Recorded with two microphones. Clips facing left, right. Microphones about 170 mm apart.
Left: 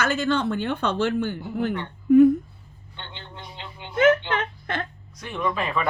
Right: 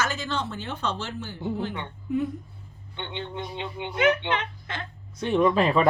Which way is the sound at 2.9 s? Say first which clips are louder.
Right 8 dB; 20° right (ahead or behind).